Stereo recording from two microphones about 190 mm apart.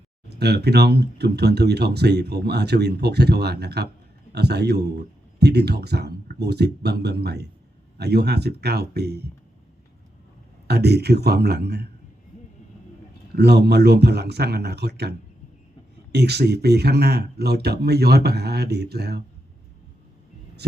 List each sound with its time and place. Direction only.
0.3 s speech: 60° right (ahead or behind)
10.7 s speech: 60° right (ahead or behind)
13.3 s speech: 60° right (ahead or behind)
16.1 s speech: 60° right (ahead or behind)